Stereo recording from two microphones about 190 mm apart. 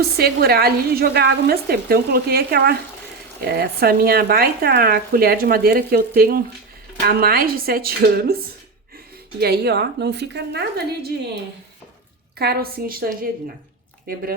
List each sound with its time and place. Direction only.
0.2 s a woman's voice: 55° right (ahead or behind)
9.4 s a woman's voice: 60° right (ahead or behind)
12.4 s speech: 55° right (ahead or behind)